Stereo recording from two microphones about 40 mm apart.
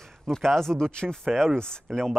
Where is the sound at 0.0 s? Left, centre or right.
Centre.